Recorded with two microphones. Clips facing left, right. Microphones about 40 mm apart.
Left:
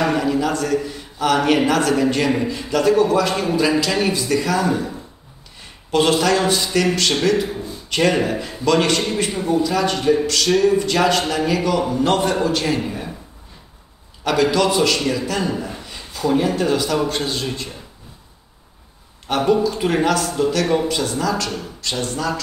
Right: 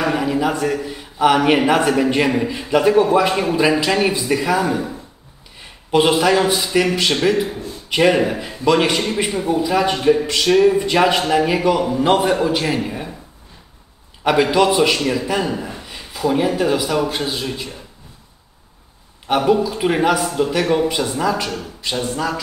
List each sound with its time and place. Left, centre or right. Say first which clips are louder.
0.0 s a man's voice: even; centre
14.2 s a man's voice: right 2 dB; right
19.2 s a man's voice: right 1 dB; centre